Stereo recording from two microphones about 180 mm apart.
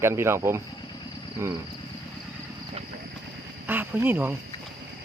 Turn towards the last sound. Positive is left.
turn(degrees=-10)  # may be behind; listen again after turning